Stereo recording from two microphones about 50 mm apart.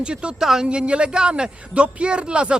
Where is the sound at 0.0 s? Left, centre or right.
Centre.